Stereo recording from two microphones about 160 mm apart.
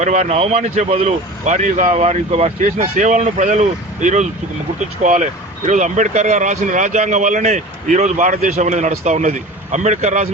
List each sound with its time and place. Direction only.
0.0 s speech: 45° right (ahead or behind)